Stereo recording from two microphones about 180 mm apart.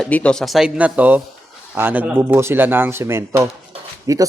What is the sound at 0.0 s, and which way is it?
Speech, 5° left (ahead or behind).